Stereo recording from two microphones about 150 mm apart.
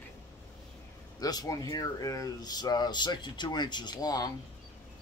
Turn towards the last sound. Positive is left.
turn(degrees=25)  # may be behind; listen again after turning